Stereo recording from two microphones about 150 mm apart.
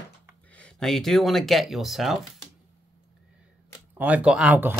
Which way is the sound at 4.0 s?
10° right (ahead or behind).